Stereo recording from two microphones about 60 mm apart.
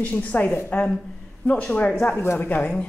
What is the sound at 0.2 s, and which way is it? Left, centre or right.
A woman's voice, left.